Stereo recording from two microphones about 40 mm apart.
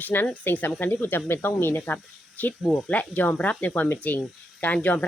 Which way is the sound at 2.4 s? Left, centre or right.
Left.